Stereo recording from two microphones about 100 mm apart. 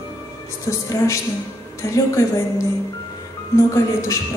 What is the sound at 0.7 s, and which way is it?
A man's voice, 30° left (ahead or behind).